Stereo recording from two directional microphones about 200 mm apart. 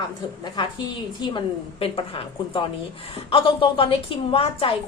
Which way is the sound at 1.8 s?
30° left (ahead or behind).